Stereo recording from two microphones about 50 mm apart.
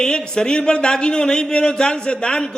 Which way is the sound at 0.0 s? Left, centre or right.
Centre.